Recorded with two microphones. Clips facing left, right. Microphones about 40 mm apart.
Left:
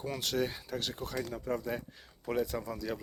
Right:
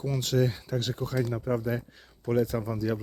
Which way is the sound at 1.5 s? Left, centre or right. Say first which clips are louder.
Right 6 dB; centre.